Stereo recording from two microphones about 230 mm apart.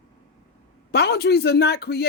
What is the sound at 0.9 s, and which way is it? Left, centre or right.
A man's voice, left.